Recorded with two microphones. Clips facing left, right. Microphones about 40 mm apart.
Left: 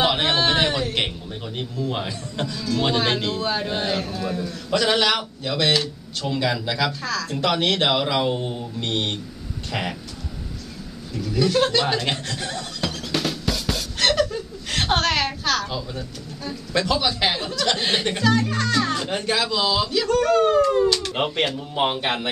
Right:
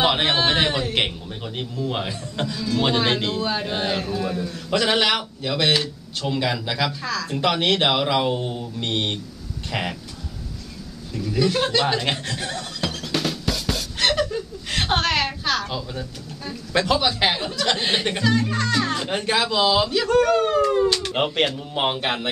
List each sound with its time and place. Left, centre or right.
0.0 s a sound: centre
0.9 s speech: centre
4.8 s speech: centre
7.2 s a man's voice: centre
7.9 s speech: centre
11.1 s speech: centre
12.3 s music: centre
16.7 s a man's voice: right
17.7 s a man's voice: centre
21.7 s a man's voice: centre